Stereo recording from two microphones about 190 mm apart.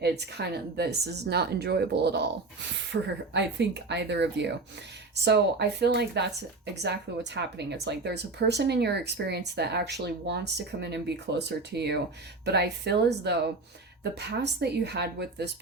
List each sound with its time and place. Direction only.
0.0 s speech: 60° right (ahead or behind)